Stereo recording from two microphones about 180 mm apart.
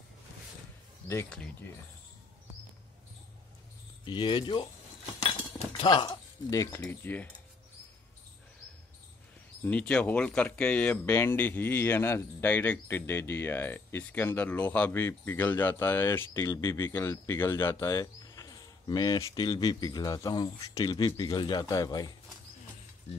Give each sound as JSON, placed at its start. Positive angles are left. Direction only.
{"t": 1.0, "sound": "speech", "side_deg": 10}
{"t": 4.0, "sound": "speech", "side_deg": 25}
{"t": 9.7, "sound": "speech", "side_deg": 5}